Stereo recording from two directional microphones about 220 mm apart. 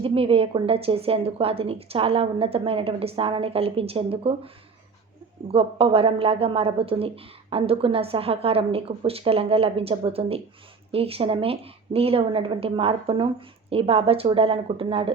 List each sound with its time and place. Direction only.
0.0 s a woman's voice: 25° right (ahead or behind)